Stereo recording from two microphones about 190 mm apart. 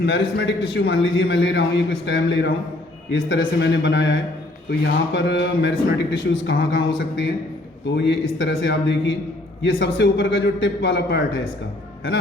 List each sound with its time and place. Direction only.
0.0 s a man's voice: 65° left (ahead or behind)